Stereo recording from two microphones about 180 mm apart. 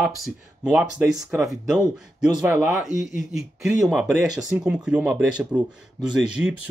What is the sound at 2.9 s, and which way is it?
Speech, 45° left (ahead or behind).